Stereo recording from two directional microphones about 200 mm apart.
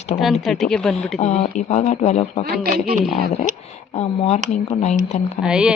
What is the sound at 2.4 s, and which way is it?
Speech, 50° right (ahead or behind).